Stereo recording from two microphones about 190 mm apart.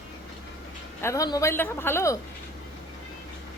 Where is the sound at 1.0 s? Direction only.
15° left (ahead or behind).